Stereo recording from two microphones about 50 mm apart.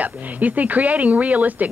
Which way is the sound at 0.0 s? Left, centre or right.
Right.